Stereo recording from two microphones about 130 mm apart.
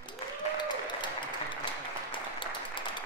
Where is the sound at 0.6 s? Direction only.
35° left (ahead or behind).